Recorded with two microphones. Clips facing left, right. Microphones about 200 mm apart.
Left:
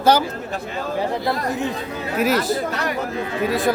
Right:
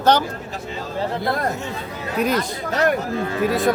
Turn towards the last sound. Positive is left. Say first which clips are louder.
# right 1 dB
turn(degrees=0)  # may be behind; listen again after turning